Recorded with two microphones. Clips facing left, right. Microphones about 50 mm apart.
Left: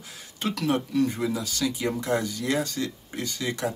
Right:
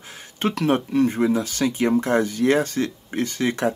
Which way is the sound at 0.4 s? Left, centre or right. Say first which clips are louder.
Right 5 dB; right.